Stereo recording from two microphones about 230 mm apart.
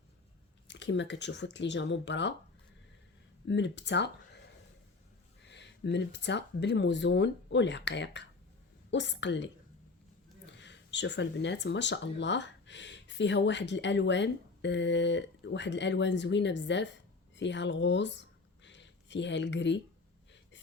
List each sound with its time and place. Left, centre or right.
0.7 s speech: left
3.4 s speech: left
5.5 s speech: left
10.6 s speech: left